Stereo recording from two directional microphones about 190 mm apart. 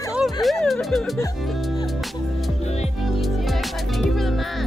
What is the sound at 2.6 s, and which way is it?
Music, 35° left (ahead or behind).